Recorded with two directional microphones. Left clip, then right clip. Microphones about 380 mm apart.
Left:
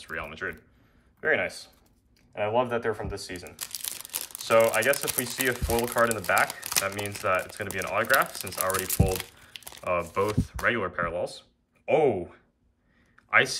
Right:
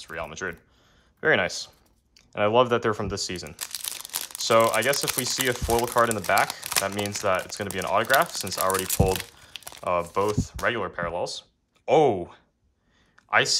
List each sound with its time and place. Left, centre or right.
0.0 s speech: centre